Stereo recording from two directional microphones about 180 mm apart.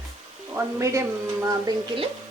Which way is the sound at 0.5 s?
15° right (ahead or behind).